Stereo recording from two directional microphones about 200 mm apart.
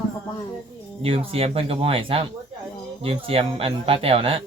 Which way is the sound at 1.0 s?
30° right (ahead or behind).